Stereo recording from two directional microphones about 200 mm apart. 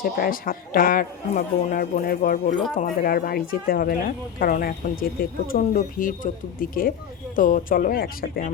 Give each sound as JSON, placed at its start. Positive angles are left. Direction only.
{"t": 0.0, "sound": "speech", "side_deg": 45}